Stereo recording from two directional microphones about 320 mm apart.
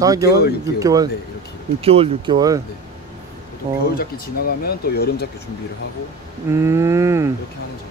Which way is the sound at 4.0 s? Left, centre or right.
Left.